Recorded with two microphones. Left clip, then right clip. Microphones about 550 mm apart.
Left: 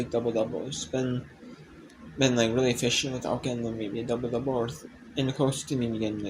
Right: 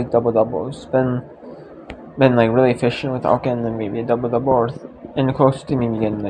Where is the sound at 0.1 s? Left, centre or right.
Left.